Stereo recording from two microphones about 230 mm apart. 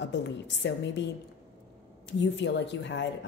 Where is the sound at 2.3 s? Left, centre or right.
Left.